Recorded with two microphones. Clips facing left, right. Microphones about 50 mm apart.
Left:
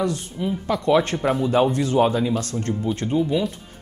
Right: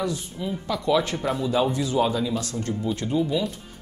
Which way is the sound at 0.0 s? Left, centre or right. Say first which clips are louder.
Left 4 dB; left.